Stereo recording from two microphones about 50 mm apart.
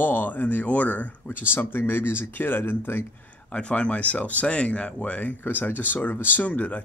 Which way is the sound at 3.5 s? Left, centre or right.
Left.